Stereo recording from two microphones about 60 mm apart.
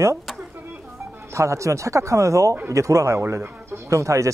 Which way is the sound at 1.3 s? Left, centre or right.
Right.